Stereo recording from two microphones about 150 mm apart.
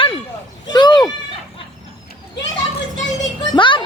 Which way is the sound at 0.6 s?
30° left (ahead or behind).